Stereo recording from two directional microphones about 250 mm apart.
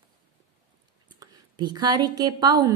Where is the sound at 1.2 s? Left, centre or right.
Centre.